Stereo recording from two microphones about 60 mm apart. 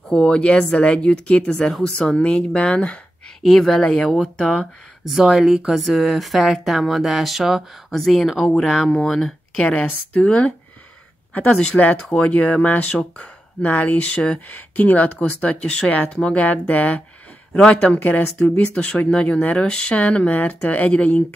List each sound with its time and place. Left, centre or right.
0.1 s speech: centre
3.4 s speech: centre
3.7 s speech: centre
4.5 s speech: centre
5.8 s speech: centre
9.8 s speech: left
11.7 s speech: left
17.9 s speech: left
18.8 s speech: centre